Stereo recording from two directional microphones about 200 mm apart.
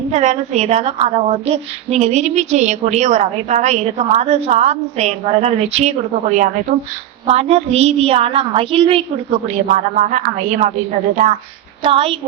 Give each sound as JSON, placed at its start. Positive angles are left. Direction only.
{"t": 0.1, "sound": "a woman's voice", "side_deg": -35}
{"t": 9.6, "sound": "a woman's voice", "side_deg": -40}